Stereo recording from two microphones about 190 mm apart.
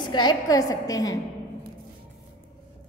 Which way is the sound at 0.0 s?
25° left (ahead or behind).